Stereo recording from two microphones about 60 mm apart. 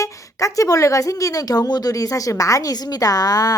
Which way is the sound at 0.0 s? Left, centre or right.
Left.